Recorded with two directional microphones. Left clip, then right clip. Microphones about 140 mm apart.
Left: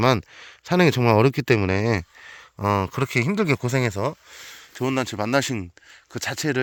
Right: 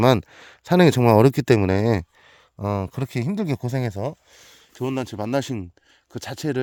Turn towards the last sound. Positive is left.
turn(degrees=-35)  # may be behind; listen again after turning